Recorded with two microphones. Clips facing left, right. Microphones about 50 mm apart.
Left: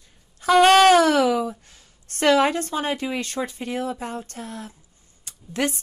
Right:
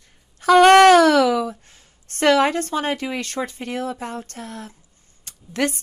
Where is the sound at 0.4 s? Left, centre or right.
Right.